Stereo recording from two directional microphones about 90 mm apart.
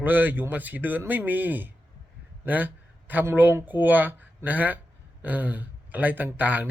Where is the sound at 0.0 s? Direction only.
20° right (ahead or behind).